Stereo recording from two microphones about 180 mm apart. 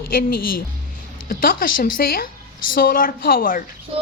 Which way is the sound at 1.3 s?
55° left (ahead or behind).